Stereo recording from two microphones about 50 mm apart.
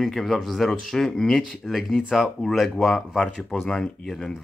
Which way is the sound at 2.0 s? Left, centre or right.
Centre.